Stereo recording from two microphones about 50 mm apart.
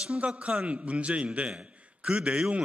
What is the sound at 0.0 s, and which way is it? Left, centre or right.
A man's voice, centre.